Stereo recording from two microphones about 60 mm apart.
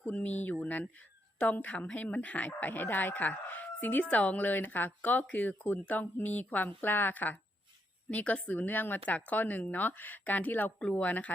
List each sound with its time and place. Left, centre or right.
0.1 s a woman's voice: left